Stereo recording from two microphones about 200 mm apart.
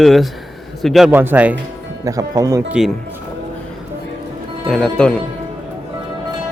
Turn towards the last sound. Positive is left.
turn(degrees=5)  # may be behind; listen again after turning